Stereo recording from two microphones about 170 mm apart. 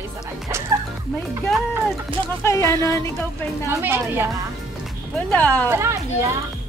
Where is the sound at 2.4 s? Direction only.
15° left (ahead or behind).